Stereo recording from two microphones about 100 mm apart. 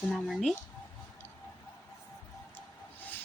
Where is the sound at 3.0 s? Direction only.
20° left (ahead or behind).